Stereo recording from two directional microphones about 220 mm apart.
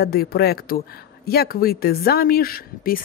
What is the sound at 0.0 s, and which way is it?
Speech, 45° left (ahead or behind).